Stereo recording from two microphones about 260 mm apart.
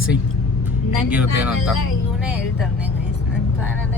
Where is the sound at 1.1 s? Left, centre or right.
Centre.